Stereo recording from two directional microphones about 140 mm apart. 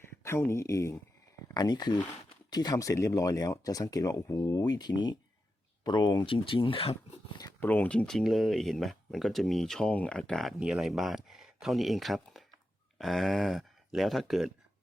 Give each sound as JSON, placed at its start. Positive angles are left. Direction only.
{"t": 0.2, "sound": "speech", "side_deg": 20}
{"t": 7.6, "sound": "speech", "side_deg": 15}